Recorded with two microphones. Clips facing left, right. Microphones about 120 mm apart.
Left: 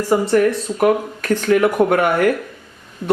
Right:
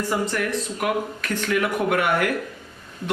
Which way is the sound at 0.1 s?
35° left (ahead or behind).